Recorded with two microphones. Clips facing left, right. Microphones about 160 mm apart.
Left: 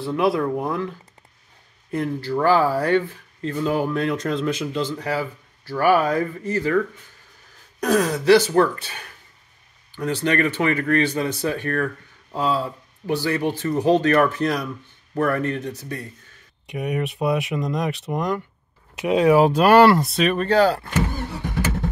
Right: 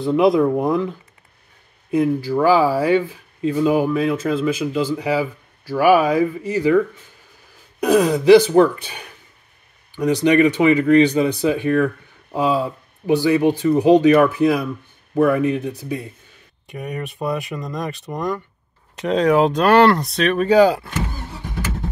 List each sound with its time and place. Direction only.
0.0 s speech: 20° right (ahead or behind)
1.9 s speech: 10° right (ahead or behind)
7.8 s speech: 15° right (ahead or behind)
16.6 s speech: centre (ahead or behind)
20.4 s speech: 10° right (ahead or behind)